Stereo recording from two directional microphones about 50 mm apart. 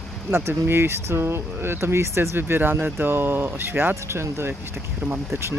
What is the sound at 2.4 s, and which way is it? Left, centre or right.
Speech, right.